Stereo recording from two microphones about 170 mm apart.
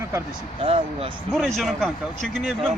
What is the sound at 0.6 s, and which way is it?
Speech, 35° right (ahead or behind).